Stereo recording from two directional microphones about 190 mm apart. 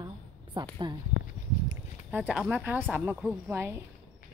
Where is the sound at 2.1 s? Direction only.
5° right (ahead or behind).